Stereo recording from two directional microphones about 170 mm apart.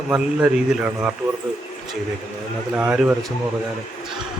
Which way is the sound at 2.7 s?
10° right (ahead or behind).